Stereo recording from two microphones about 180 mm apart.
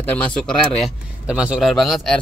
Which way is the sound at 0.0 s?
10° left (ahead or behind).